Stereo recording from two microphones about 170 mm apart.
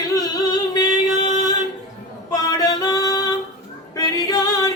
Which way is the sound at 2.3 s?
20° left (ahead or behind).